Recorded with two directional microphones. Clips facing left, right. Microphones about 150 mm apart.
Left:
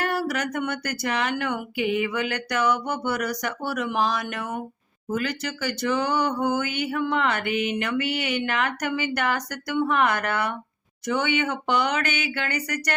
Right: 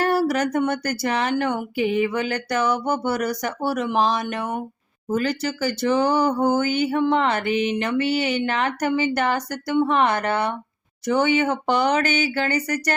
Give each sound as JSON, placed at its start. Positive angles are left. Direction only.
{"t": 0.0, "sound": "speech", "side_deg": -35}